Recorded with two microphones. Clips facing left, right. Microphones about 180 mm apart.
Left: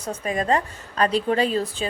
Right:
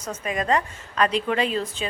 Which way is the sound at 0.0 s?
35° left (ahead or behind).